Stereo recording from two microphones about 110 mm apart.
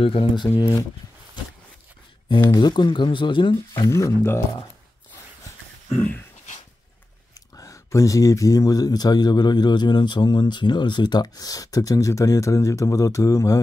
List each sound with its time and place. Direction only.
0.0 s speech: 55° left (ahead or behind)
2.2 s speech: 45° left (ahead or behind)
3.9 s speech: 25° left (ahead or behind)
5.9 s speech: 15° left (ahead or behind)
7.5 s a man's voice: 30° left (ahead or behind)